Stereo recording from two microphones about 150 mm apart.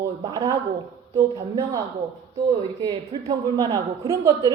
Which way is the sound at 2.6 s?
35° right (ahead or behind).